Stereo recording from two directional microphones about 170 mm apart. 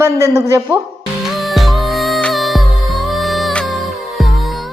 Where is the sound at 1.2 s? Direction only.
Centre (ahead or behind).